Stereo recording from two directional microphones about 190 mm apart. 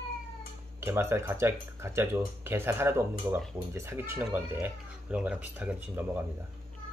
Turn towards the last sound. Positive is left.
turn(degrees=-10)  # may be behind; listen again after turning